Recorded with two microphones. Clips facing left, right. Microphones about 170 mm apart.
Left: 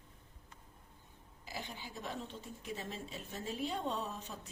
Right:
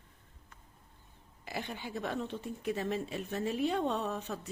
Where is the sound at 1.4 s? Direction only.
65° right (ahead or behind).